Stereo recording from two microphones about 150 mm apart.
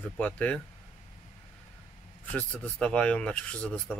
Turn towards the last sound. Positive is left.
turn(degrees=5)  # may be behind; listen again after turning